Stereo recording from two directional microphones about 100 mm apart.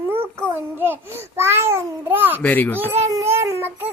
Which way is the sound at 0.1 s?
25° right (ahead or behind).